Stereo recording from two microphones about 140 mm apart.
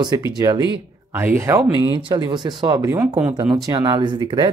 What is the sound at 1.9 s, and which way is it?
Speech, 35° right (ahead or behind).